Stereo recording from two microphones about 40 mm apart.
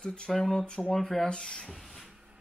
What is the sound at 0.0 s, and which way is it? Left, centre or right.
Speech, left.